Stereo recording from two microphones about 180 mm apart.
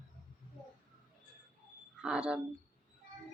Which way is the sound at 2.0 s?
5° right (ahead or behind).